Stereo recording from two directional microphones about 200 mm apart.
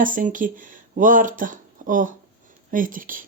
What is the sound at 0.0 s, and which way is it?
Speech, 40° right (ahead or behind).